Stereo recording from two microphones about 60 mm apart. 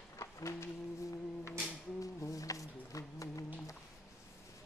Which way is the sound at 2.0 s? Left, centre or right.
Left.